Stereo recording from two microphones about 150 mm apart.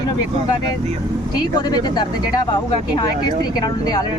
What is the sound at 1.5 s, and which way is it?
Speech, 25° left (ahead or behind).